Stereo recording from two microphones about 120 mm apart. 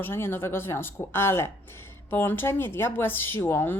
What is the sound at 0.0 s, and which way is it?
Speech, 20° left (ahead or behind).